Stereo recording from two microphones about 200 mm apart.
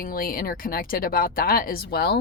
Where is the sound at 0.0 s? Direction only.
45° left (ahead or behind).